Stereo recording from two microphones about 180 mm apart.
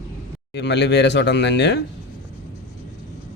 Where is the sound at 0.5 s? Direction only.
75° left (ahead or behind).